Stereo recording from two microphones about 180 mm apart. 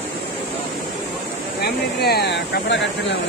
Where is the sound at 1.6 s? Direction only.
60° left (ahead or behind).